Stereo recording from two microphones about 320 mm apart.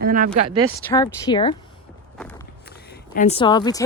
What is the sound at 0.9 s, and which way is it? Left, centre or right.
Speech, centre.